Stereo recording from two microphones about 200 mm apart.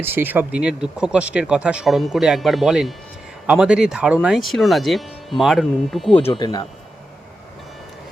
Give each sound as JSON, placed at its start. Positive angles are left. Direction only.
{"t": 0.0, "sound": "speech", "side_deg": -10}
{"t": 6.2, "sound": "speech", "side_deg": 25}